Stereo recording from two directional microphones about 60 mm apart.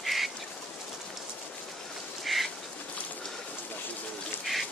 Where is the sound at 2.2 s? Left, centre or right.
Centre.